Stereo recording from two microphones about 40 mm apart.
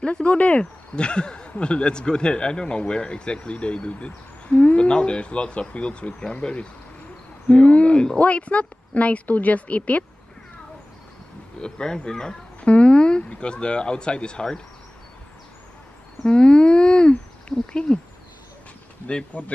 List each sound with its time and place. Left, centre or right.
0.0 s speech: left
11.6 s speech: left
12.5 s speech: left
16.3 s speech: left
19.0 s speech: left